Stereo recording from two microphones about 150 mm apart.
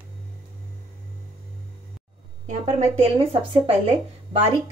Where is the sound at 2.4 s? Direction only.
45° right (ahead or behind).